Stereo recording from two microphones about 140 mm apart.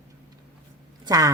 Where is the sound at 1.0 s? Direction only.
25° right (ahead or behind).